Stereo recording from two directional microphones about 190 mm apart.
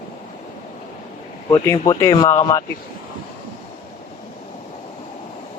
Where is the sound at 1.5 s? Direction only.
15° left (ahead or behind).